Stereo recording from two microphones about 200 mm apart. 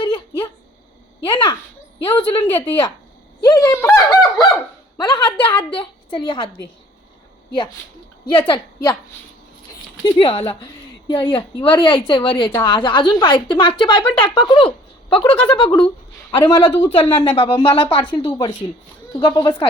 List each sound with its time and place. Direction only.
0.0 s a sound: 25° left (ahead or behind)
1.2 s a woman's voice: 25° left (ahead or behind)
3.4 s fowl: 15° left (ahead or behind)
4.9 s a woman's voice: 20° left (ahead or behind)
8.4 s a woman's voice: 25° left (ahead or behind)
10.2 s a woman's voice: 25° left (ahead or behind)